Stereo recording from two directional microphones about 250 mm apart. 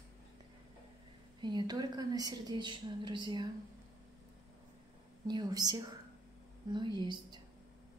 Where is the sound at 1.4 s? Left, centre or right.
Centre.